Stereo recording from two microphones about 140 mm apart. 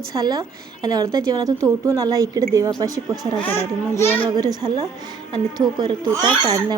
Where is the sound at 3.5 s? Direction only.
15° left (ahead or behind).